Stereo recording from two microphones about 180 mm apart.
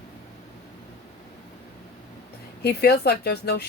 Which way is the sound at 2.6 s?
60° left (ahead or behind).